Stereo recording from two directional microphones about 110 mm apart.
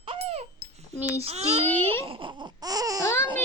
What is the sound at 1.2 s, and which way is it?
Speech, 65° right (ahead or behind).